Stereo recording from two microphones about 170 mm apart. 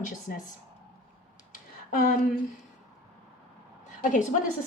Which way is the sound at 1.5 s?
60° left (ahead or behind).